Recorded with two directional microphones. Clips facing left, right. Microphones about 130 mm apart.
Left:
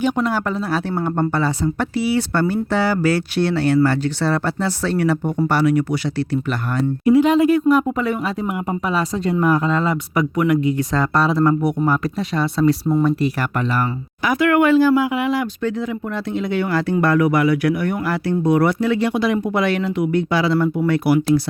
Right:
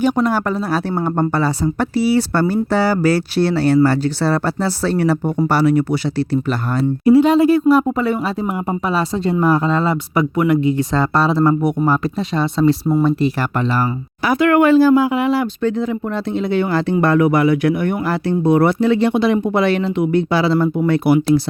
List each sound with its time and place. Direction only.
0.0 s speech: 45° right (ahead or behind); by 21.4 s 25° right (ahead or behind)